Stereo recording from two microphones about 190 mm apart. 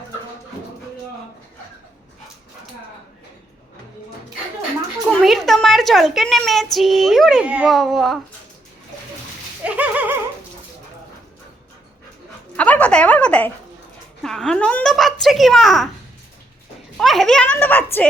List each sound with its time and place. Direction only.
5.0 s a woman's voice: centre (ahead or behind)
9.6 s a sound: 5° right (ahead or behind)
12.5 s a woman's voice: 10° left (ahead or behind)
17.0 s a woman's voice: centre (ahead or behind)